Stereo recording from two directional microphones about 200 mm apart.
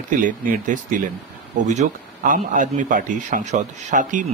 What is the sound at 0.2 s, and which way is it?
A man's voice, 40° right (ahead or behind).